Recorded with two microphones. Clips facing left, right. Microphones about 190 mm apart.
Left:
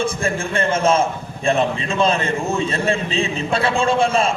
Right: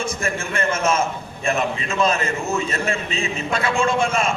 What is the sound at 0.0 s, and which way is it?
A man's voice, 30° left (ahead or behind).